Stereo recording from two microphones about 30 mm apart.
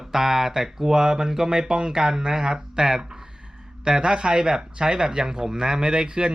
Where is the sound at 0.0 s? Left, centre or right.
Centre.